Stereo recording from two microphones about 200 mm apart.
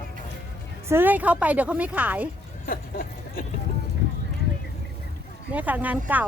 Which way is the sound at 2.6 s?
45° left (ahead or behind).